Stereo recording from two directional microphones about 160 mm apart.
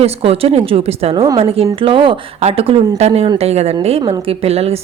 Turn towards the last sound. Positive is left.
turn(degrees=-40)  # may be behind; listen again after turning